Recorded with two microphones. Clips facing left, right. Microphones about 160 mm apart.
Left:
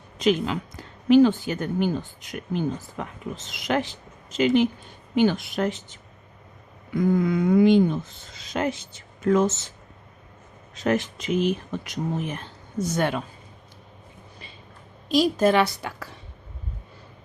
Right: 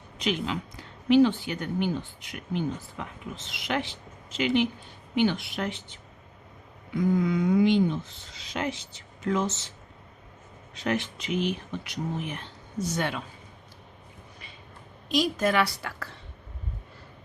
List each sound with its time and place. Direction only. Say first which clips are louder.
0.2 s speech: left 7 dB; 45° left (ahead or behind)
10.8 s speech: left 5 dB; 45° left (ahead or behind)
15.1 s a woman's voice: left 5 dB; 35° left (ahead or behind); by 16.1 s 15° left (ahead or behind)